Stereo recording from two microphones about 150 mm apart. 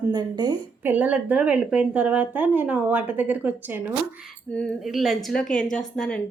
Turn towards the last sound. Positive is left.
turn(degrees=5)  # may be behind; listen again after turning